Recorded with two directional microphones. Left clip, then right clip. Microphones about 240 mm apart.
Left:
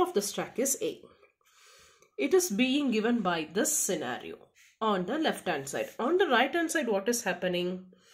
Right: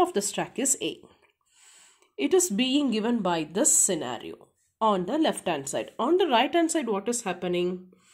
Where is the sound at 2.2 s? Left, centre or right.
Right.